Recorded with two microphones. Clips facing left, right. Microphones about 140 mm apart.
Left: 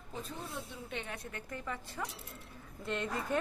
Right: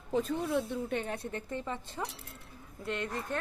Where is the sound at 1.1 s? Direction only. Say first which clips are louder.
Right 6 dB; 30° right (ahead or behind).